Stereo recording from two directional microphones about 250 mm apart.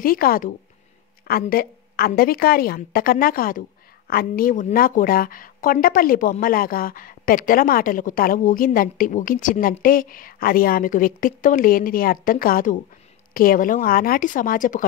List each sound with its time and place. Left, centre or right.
0.0 s a woman's voice: left